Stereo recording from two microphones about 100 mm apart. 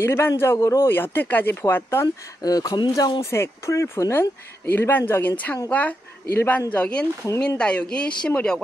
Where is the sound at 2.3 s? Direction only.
40° left (ahead or behind).